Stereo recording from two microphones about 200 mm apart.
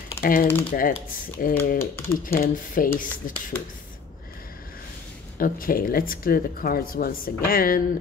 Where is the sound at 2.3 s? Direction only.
45° left (ahead or behind).